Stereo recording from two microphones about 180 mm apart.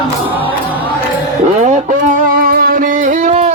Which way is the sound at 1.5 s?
40° right (ahead or behind).